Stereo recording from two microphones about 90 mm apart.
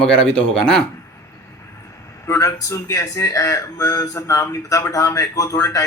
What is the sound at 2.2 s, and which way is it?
Speech, 35° left (ahead or behind).